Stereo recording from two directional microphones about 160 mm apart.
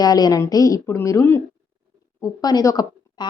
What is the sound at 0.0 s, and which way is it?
A woman's voice, 25° left (ahead or behind).